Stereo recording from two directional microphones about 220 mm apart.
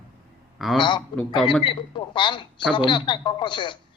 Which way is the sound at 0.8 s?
20° left (ahead or behind).